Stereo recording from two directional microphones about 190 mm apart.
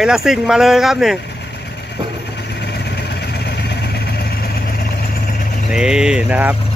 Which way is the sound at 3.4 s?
60° left (ahead or behind).